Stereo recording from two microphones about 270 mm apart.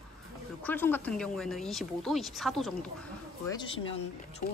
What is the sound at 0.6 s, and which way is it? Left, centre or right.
Speech, centre.